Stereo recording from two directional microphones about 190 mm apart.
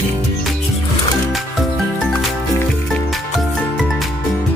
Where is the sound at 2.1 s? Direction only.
Centre (ahead or behind).